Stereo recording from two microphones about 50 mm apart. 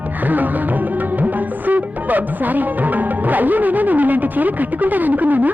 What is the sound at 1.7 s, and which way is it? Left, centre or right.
Music, right.